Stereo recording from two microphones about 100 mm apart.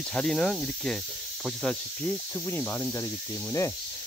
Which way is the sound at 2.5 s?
20° left (ahead or behind).